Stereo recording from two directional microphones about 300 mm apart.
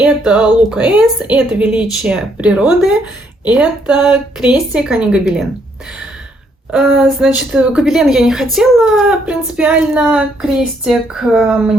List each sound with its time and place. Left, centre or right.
0.0 s a woman's voice: centre
6.7 s a woman's voice: centre